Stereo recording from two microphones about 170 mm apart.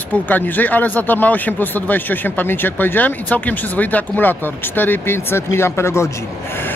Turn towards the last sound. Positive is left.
turn(degrees=15)  # may be behind; listen again after turning